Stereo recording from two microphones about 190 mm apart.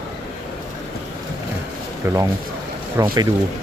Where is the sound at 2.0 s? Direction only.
15° right (ahead or behind).